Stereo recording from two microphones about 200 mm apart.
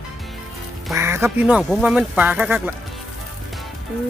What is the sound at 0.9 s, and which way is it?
Speech, 15° right (ahead or behind).